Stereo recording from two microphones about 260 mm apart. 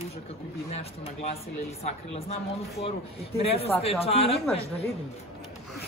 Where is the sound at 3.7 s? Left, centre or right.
Centre.